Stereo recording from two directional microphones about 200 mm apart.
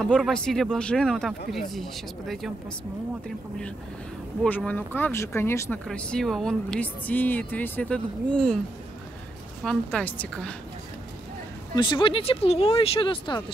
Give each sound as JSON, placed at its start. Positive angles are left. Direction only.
{"t": 0.0, "sound": "speech", "side_deg": 5}
{"t": 4.4, "sound": "speech", "side_deg": 10}
{"t": 9.6, "sound": "speech", "side_deg": 5}
{"t": 11.7, "sound": "speech", "side_deg": 25}